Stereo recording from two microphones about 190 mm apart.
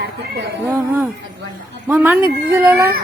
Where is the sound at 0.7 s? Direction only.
10° right (ahead or behind).